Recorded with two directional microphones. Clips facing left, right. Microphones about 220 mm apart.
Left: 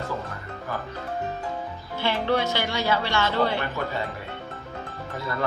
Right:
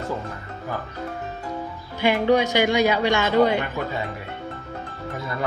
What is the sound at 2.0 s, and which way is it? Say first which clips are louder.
Speech: right 6 dB; 15° right (ahead or behind).